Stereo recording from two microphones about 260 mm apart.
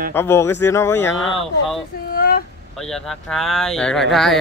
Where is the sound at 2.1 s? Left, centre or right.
Left.